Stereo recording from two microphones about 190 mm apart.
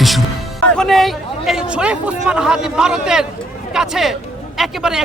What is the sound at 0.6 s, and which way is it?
A man's voice, 5° left (ahead or behind).